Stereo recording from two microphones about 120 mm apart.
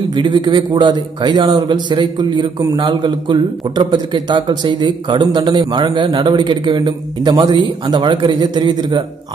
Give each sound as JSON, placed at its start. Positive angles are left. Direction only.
{"t": 0.1, "sound": "a man's voice", "side_deg": -40}